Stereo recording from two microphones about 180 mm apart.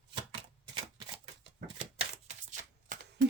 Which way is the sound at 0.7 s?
30° right (ahead or behind).